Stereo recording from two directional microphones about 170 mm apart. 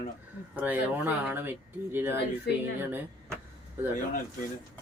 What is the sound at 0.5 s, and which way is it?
Speech, 10° right (ahead or behind).